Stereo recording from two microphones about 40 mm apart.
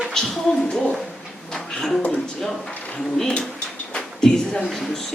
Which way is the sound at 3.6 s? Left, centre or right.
Left.